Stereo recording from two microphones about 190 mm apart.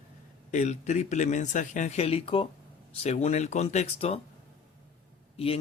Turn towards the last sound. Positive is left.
turn(degrees=30)  # may be behind; listen again after turning